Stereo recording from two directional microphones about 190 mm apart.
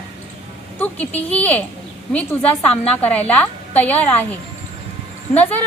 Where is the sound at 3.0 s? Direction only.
10° left (ahead or behind).